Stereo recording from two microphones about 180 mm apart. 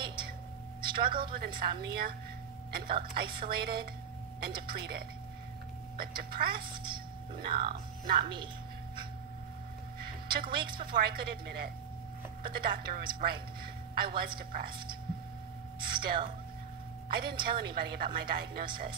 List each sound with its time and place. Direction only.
0.0 s a sound: 25° right (ahead or behind)
0.8 s a woman's voice: 55° right (ahead or behind)
9.9 s a sound: 55° right (ahead or behind)
10.5 s a woman's voice: 25° right (ahead or behind)
10.9 s a woman's voice: 60° right (ahead or behind)
15.8 s a woman's voice: 55° right (ahead or behind)